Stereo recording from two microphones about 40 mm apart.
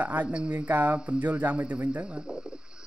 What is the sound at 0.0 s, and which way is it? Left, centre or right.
Speech, right.